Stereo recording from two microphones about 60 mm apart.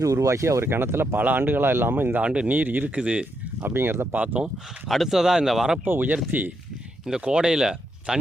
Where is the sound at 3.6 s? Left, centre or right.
Right.